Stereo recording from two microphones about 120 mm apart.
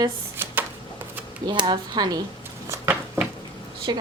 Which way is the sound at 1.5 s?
40° right (ahead or behind).